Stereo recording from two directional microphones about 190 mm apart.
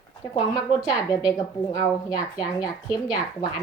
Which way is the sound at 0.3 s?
20° left (ahead or behind).